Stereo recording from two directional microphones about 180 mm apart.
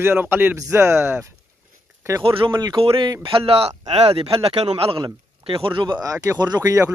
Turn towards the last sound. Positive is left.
turn(degrees=-20)  # may be behind; listen again after turning